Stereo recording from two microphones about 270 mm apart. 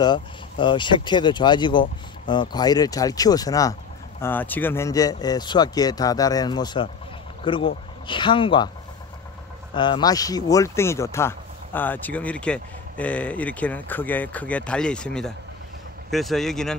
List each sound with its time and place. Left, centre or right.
0.0 s speech: centre
9.8 s speech: centre